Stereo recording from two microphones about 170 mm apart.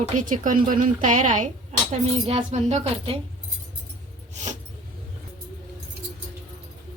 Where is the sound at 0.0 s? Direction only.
45° right (ahead or behind).